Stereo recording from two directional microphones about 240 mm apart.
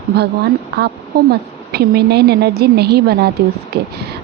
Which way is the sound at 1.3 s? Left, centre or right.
Right.